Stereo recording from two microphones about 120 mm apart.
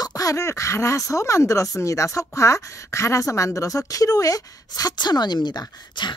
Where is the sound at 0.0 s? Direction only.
30° left (ahead or behind).